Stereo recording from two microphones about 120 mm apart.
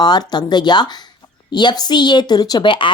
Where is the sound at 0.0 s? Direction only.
35° left (ahead or behind).